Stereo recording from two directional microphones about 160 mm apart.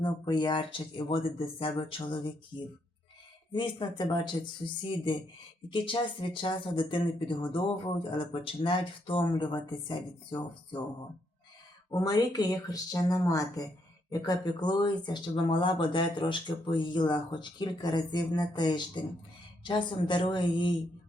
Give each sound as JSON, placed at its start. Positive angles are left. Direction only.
{"t": 0.0, "sound": "speech", "side_deg": 30}
{"t": 11.9, "sound": "speech", "side_deg": 25}